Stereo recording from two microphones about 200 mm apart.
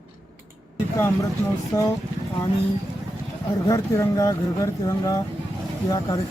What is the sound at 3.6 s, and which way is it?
Speech, 15° left (ahead or behind).